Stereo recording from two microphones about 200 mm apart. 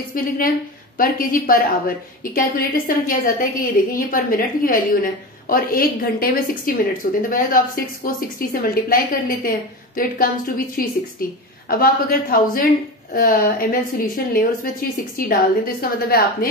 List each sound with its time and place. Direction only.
0.1 s a woman's voice: 45° left (ahead or behind)